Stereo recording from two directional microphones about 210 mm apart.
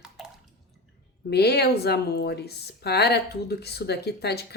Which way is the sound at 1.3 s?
50° left (ahead or behind).